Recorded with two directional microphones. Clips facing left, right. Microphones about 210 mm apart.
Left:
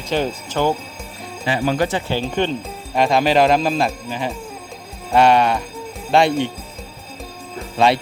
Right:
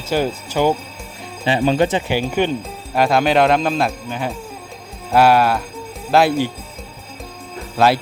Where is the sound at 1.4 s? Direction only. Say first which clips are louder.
Right 3 dB; 25° right (ahead or behind); by 6.5 s 5° right (ahead or behind).